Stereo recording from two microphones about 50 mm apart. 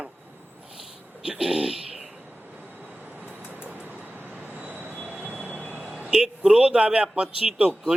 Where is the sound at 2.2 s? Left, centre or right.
Right.